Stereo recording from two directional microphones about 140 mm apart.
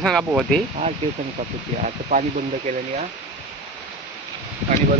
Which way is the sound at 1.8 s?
60° right (ahead or behind).